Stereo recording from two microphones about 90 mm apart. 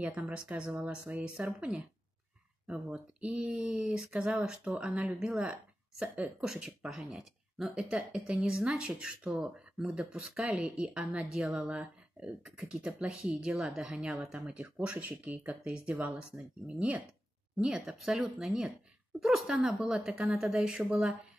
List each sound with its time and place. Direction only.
0.0 s speech: 15° right (ahead or behind)